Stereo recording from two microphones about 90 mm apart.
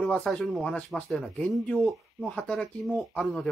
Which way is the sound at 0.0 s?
10° left (ahead or behind).